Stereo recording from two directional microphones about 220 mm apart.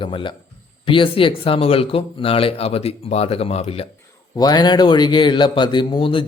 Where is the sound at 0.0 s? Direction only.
20° left (ahead or behind).